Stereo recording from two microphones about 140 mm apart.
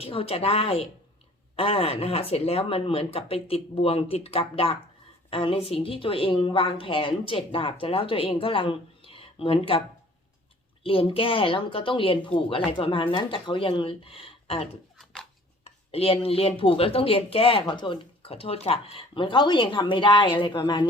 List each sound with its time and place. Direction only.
0.0 s speech: 40° left (ahead or behind)
10.8 s speech: 40° left (ahead or behind)
14.9 s a sound: 5° left (ahead or behind)
15.6 s speech: 45° left (ahead or behind)